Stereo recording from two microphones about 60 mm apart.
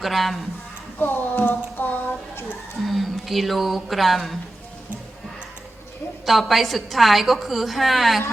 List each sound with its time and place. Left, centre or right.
0.0 s a woman's voice: centre
0.9 s a sound: left
2.8 s speech: centre
6.2 s a woman's voice: centre